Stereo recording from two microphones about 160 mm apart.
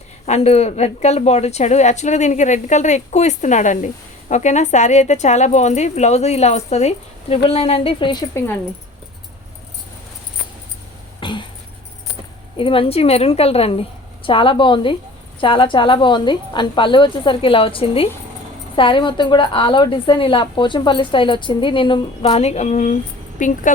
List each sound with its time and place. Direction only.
0.3 s a woman's voice: 40° left (ahead or behind)
11.2 s a sound: 30° left (ahead or behind)
12.5 s a woman's voice: 35° left (ahead or behind); by 23.6 s 55° left (ahead or behind)